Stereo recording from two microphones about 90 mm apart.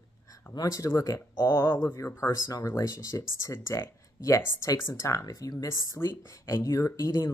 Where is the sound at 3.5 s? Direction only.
25° left (ahead or behind).